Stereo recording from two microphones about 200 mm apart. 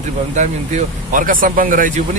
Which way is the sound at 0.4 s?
35° right (ahead or behind).